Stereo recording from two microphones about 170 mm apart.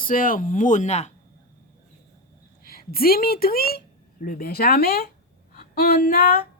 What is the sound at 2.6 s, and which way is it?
A woman's voice, 60° left (ahead or behind).